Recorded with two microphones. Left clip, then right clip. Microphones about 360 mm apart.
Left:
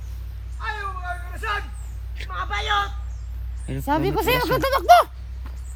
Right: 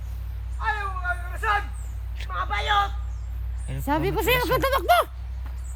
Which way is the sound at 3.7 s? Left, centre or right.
Centre.